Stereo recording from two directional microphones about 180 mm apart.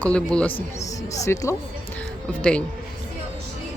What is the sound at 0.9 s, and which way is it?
Speech, 20° left (ahead or behind).